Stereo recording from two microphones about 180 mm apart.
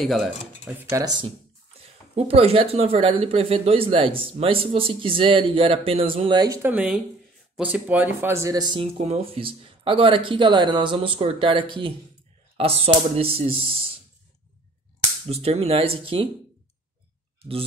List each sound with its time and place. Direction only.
0.0 s speech: centre (ahead or behind)
0.9 s speech: 25° right (ahead or behind)
15.2 s speech: 35° right (ahead or behind)